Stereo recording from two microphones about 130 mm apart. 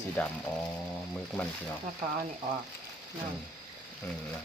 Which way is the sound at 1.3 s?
5° left (ahead or behind).